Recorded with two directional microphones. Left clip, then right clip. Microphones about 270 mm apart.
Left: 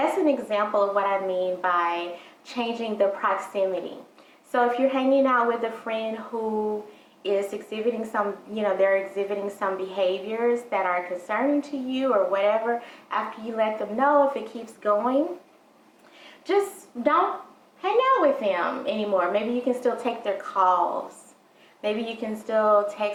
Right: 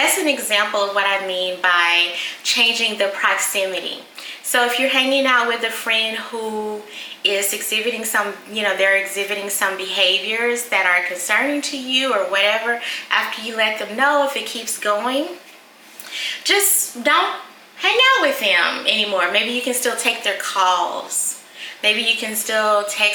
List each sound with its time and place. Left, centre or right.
0.0 s a woman's voice: centre
6.3 s a sound: left
7.2 s a woman's voice: centre
16.3 s a woman's voice: centre